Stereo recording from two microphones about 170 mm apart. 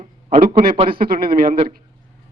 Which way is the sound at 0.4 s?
50° right (ahead or behind).